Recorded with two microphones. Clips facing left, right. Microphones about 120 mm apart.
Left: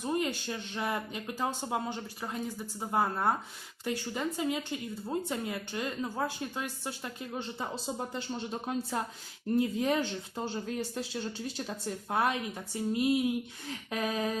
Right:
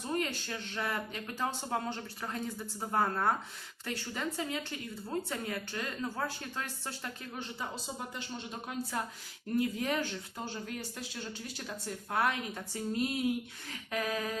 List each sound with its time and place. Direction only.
0.0 s speech: 15° left (ahead or behind)
7.6 s speech: 35° left (ahead or behind)
9.6 s speech: 25° left (ahead or behind)
13.9 s speech: 25° left (ahead or behind)